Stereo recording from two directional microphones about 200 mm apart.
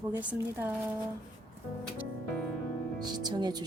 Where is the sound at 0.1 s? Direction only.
10° right (ahead or behind).